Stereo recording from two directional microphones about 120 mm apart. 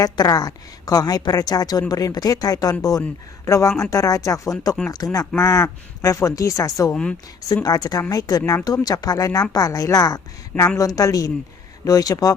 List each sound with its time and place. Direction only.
0.0 s a woman's voice: 30° left (ahead or behind)
6.9 s speech: 10° left (ahead or behind)
7.4 s a woman's voice: 30° left (ahead or behind)